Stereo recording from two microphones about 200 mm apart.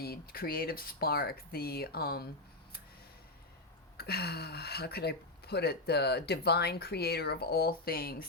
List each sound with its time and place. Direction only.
0.0 s speech: 50° left (ahead or behind)
3.9 s speech: 50° left (ahead or behind)